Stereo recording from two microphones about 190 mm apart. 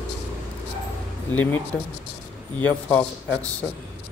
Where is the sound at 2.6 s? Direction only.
10° left (ahead or behind).